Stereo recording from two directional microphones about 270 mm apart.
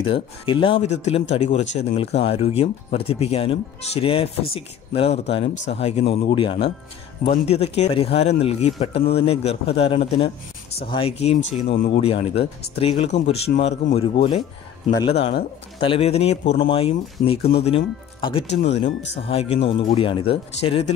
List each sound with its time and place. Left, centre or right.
0.0 s speech: centre
15.8 s speech: left